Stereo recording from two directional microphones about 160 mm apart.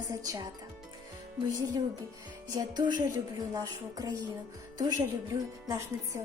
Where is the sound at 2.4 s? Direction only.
25° right (ahead or behind).